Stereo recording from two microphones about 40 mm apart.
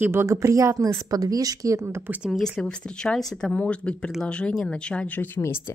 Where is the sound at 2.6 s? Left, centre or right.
Left.